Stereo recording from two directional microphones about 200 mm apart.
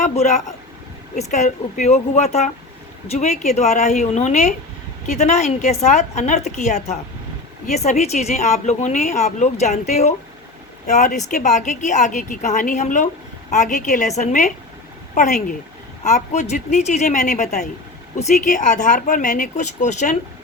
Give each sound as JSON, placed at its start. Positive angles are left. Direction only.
{"t": 0.0, "sound": "speech", "side_deg": 35}